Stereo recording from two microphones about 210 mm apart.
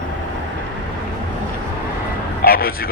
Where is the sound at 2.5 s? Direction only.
45° left (ahead or behind).